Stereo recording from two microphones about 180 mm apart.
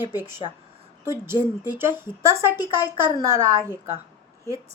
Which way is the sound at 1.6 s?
10° right (ahead or behind).